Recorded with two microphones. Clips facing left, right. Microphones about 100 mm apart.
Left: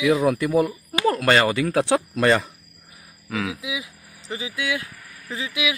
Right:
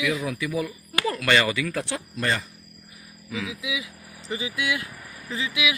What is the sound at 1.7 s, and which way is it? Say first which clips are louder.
Speech: left 10 dB; 75° left (ahead or behind).